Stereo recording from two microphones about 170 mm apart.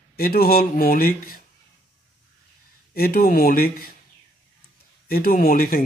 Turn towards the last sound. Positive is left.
turn(degrees=55)  # may be behind; listen again after turning